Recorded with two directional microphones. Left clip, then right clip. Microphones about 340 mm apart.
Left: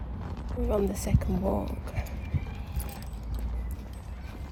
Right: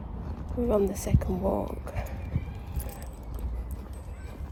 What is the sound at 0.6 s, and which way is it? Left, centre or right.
Speech, centre.